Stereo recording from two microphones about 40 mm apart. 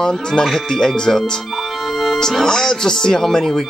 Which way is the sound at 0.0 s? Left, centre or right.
Centre.